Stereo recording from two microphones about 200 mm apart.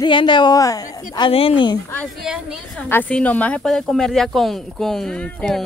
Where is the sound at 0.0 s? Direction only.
25° left (ahead or behind).